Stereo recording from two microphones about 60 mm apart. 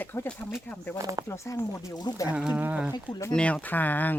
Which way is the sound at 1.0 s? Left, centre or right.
Right.